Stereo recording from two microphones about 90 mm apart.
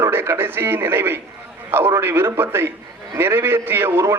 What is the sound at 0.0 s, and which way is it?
A man's voice, 25° right (ahead or behind).